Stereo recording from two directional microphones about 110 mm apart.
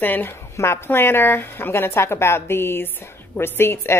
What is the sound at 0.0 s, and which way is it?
A woman's voice, 20° left (ahead or behind).